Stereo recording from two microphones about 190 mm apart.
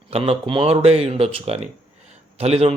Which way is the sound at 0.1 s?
30° right (ahead or behind).